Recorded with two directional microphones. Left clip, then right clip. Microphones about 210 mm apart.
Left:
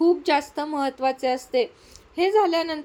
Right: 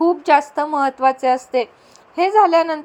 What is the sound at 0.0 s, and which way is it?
A woman's voice, 10° right (ahead or behind).